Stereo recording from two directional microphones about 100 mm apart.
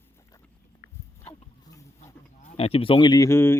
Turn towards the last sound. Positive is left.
turn(degrees=25)  # may be behind; listen again after turning